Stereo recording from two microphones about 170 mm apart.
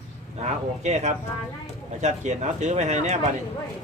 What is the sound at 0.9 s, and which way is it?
Speech, 40° right (ahead or behind).